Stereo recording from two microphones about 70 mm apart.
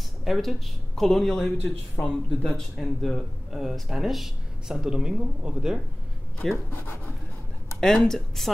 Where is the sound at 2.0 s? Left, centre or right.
Left.